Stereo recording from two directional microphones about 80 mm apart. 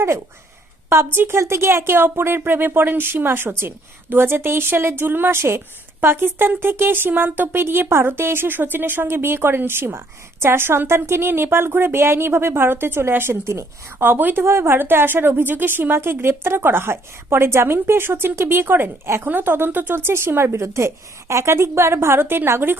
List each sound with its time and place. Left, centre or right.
0.9 s a woman's voice: right
14.0 s a woman's voice: right